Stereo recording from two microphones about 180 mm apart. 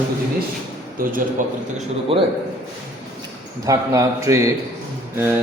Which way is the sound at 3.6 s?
20° right (ahead or behind).